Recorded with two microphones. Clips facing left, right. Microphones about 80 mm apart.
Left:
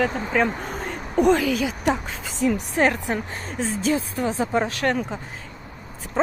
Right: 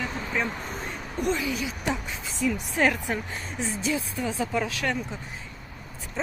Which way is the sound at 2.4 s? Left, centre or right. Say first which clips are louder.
Left 4 dB; left.